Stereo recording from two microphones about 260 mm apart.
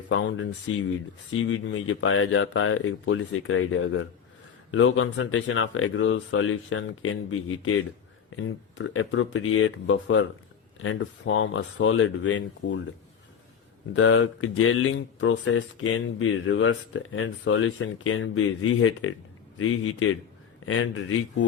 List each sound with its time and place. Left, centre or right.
0.1 s speech: left
13.9 s speech: left